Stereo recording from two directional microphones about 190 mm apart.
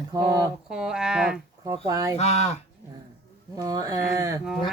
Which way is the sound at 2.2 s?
35° left (ahead or behind).